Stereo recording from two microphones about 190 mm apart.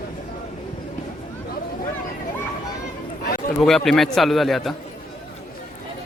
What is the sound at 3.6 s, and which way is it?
A man's voice, centre (ahead or behind).